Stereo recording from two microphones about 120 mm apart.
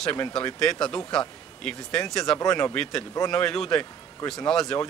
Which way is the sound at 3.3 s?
5° left (ahead or behind).